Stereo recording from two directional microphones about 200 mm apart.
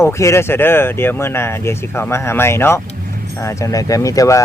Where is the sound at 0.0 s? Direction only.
15° left (ahead or behind).